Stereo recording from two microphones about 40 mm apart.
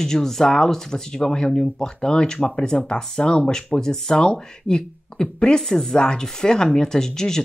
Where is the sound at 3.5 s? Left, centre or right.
Centre.